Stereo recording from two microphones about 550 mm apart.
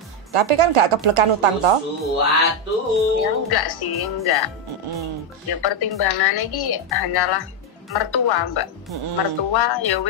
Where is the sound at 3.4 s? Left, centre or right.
Left.